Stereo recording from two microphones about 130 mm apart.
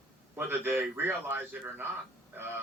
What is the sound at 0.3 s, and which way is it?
Speech, 15° right (ahead or behind).